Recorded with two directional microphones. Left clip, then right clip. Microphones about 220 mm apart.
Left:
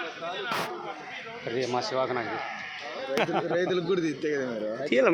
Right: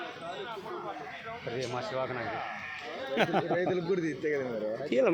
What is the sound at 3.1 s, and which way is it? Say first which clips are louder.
Speech: left 1 dB; 55° right (ahead or behind).